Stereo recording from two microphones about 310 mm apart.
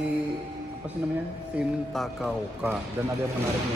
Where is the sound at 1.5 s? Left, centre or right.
Centre.